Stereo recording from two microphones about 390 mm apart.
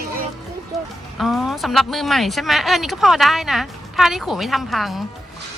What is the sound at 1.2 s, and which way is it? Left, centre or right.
Speech, centre.